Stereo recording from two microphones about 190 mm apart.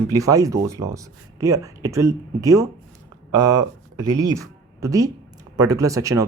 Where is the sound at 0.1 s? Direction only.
20° right (ahead or behind).